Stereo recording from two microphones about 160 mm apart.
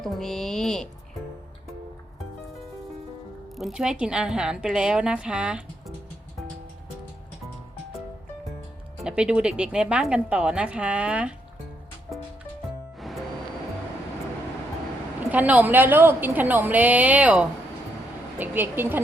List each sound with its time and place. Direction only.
0.0 s a woman's voice: centre (ahead or behind)
3.6 s a woman's voice: 5° right (ahead or behind)
9.0 s a woman's voice: 5° right (ahead or behind)
13.0 s music: centre (ahead or behind)
15.3 s a woman's voice: 10° right (ahead or behind)